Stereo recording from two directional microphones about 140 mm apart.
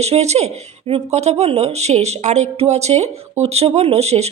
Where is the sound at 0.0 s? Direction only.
50° right (ahead or behind).